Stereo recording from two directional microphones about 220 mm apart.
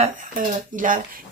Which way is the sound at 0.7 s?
40° right (ahead or behind).